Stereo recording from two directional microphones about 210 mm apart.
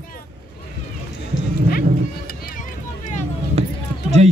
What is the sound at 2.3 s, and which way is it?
Vehicle, 40° left (ahead or behind).